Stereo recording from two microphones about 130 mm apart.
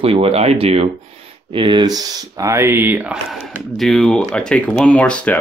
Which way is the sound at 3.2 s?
Centre (ahead or behind).